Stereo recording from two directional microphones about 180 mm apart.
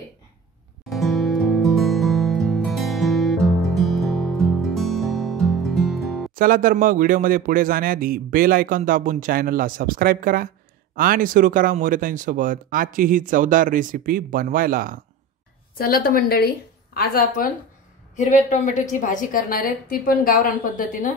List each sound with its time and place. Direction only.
0.8 s music: centre (ahead or behind)
6.3 s a man's voice: 50° right (ahead or behind)
15.8 s a woman's voice: 55° left (ahead or behind)
18.1 s a woman's voice: 40° left (ahead or behind)